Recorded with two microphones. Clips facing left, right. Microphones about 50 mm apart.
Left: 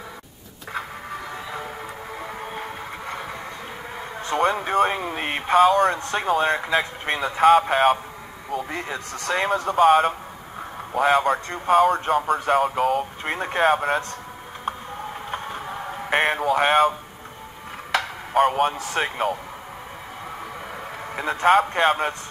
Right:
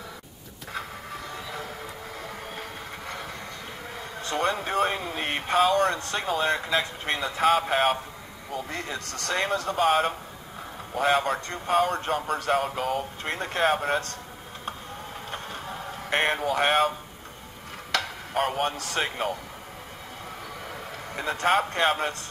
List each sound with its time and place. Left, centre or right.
1.3 s music: centre
2.2 s vehicle: centre
4.4 s speech: centre
8.6 s speech: centre
11.4 s speech: centre
11.7 s speech: centre
15.3 s a sound: centre
17.9 s tick-tock: centre
18.3 s speech: centre
21.1 s speech: centre